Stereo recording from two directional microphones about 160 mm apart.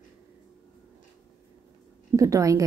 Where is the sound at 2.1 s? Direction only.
20° right (ahead or behind).